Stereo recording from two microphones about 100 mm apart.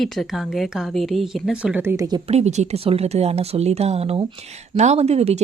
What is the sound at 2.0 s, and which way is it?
Speech, 45° right (ahead or behind).